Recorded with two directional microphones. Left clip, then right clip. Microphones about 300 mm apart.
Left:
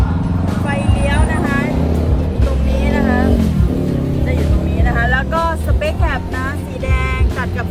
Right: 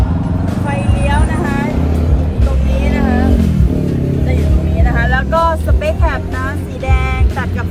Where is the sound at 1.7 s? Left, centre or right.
Left.